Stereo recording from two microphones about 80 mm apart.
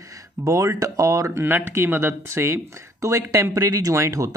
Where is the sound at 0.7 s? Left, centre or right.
Right.